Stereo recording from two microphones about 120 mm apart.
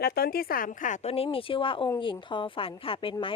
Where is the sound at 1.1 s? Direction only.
50° left (ahead or behind).